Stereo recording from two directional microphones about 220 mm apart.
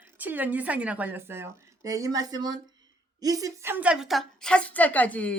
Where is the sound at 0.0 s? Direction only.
10° right (ahead or behind).